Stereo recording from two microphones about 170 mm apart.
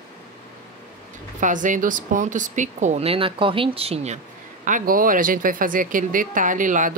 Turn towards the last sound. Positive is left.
turn(degrees=-50)  # may be behind; listen again after turning